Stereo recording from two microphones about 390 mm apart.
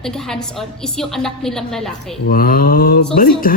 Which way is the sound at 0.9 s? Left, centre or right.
Centre.